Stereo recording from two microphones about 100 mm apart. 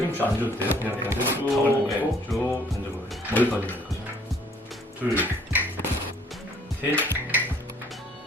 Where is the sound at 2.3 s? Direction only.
Centre (ahead or behind).